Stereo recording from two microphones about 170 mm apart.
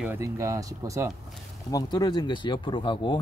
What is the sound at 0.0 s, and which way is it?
Speech, 15° right (ahead or behind).